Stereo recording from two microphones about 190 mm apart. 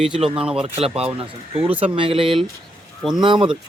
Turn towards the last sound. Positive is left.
turn(degrees=-25)  # may be behind; listen again after turning